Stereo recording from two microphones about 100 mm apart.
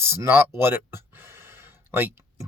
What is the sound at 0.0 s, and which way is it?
Speech, 25° right (ahead or behind).